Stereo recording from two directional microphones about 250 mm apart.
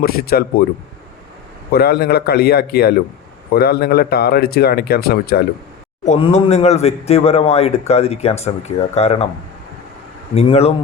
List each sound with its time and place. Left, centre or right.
0.0 s speech: left
1.7 s speech: left
6.1 s speech: left
10.3 s speech: left